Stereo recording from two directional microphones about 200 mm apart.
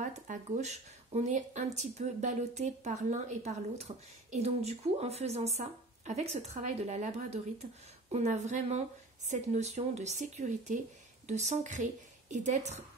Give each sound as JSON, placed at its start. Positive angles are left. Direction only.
{"t": 0.0, "sound": "speech", "side_deg": -35}